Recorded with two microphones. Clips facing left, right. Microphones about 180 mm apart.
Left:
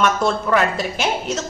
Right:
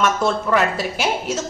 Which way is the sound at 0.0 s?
Centre (ahead or behind).